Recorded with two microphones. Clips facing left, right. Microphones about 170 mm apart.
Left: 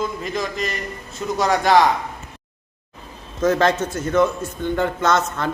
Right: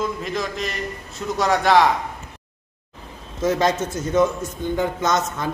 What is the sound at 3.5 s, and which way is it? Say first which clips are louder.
A man's voice: left 2 dB; 15° right (ahead or behind).